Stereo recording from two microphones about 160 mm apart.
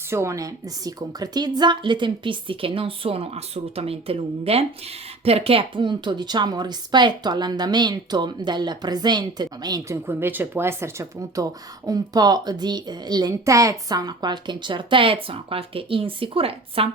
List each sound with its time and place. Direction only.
0.1 s a woman's voice: 15° right (ahead or behind); by 16.9 s 35° right (ahead or behind)